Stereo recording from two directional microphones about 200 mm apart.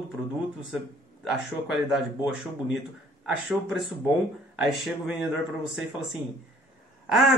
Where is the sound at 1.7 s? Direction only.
Centre (ahead or behind).